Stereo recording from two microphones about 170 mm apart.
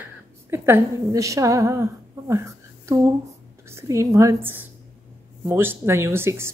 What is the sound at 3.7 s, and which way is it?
Speech, 20° right (ahead or behind).